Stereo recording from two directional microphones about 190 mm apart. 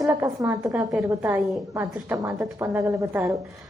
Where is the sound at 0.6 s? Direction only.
5° right (ahead or behind).